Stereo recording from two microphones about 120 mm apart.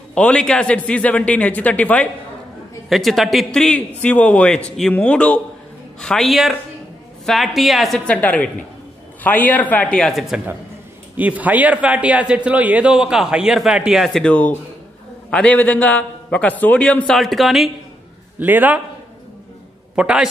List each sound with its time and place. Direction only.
0.1 s a man's voice: 10° left (ahead or behind)
2.9 s a man's voice: centre (ahead or behind)
18.4 s a man's voice: 15° right (ahead or behind)
20.0 s a man's voice: 10° right (ahead or behind)